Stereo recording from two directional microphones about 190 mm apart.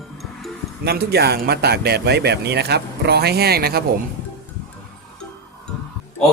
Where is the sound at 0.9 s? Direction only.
55° right (ahead or behind).